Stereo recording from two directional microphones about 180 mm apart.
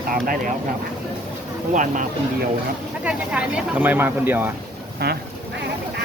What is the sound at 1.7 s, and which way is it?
Speech, 45° right (ahead or behind).